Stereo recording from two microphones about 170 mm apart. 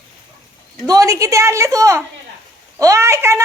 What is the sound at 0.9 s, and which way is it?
A woman's voice, 20° right (ahead or behind).